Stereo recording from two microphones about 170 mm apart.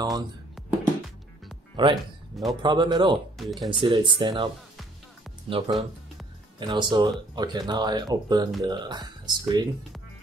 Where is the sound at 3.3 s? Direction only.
Centre (ahead or behind).